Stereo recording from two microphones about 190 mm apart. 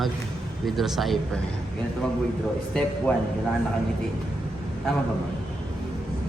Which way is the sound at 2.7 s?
5° left (ahead or behind).